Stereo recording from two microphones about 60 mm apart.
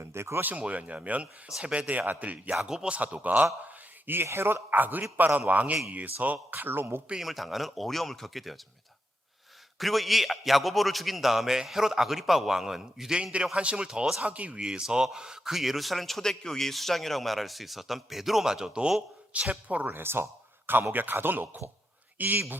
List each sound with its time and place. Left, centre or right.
0.0 s speech: right
0.4 s speech: right
2.6 s speech: centre
2.9 s speech: right
7.2 s a man's voice: centre
9.7 s a man's voice: centre; by 20.0 s right
20.0 s speech: right